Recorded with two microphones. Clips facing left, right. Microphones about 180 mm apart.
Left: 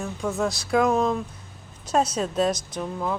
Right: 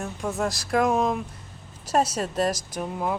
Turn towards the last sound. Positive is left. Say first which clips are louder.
# even
turn(degrees=-15)  # may be behind; listen again after turning